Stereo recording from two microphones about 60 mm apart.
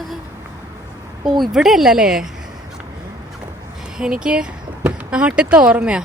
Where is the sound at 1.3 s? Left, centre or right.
Centre.